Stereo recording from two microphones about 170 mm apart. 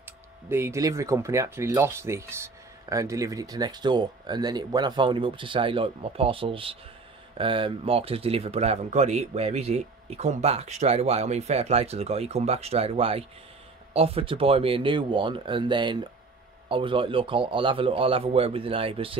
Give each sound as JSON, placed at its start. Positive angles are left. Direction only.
{"t": 0.0, "sound": "speech", "side_deg": -15}